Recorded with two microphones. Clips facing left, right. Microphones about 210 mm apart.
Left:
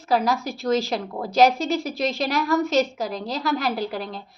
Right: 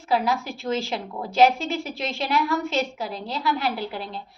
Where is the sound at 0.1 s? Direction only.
40° left (ahead or behind).